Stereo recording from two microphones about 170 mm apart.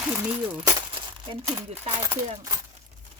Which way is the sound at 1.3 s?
30° right (ahead or behind).